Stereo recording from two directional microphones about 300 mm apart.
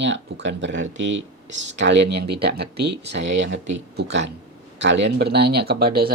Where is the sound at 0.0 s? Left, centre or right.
Right.